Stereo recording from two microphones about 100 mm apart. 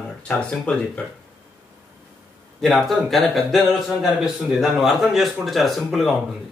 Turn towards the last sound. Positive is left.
turn(degrees=0)  # may be behind; listen again after turning